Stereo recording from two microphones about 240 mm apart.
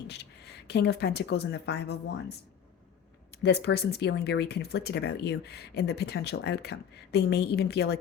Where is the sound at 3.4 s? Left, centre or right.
Left.